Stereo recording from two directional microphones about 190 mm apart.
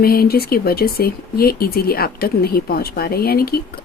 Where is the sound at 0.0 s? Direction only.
50° left (ahead or behind).